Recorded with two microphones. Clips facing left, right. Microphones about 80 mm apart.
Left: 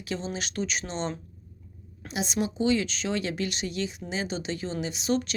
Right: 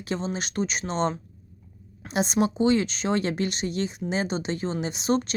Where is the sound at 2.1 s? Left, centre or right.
Right.